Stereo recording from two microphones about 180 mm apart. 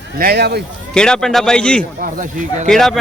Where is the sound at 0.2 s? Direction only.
65° right (ahead or behind).